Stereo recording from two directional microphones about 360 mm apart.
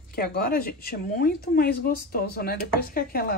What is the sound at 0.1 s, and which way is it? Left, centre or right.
A woman's voice, left.